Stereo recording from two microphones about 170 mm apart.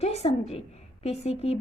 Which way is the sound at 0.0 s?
40° left (ahead or behind).